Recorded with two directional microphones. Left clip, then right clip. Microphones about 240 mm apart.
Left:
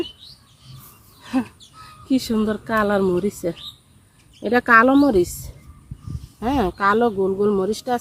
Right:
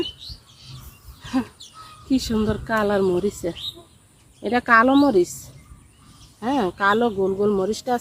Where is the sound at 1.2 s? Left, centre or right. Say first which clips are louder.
Left 1 dB; centre.